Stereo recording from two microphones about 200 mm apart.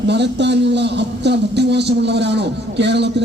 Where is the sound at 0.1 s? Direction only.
60° right (ahead or behind).